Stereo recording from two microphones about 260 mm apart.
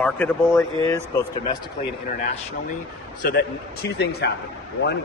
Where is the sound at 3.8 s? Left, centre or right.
Left.